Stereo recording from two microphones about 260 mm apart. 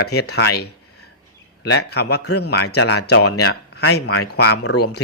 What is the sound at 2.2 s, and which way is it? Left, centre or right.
Speech, left.